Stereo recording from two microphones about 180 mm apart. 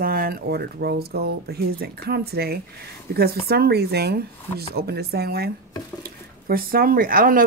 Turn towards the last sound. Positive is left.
turn(degrees=-50)  # may be behind; listen again after turning